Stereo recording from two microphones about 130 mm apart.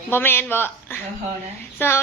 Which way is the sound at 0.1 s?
15° left (ahead or behind).